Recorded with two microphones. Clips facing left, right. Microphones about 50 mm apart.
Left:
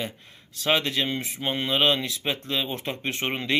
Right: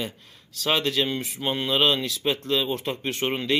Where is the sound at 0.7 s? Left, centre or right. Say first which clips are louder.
Even; left.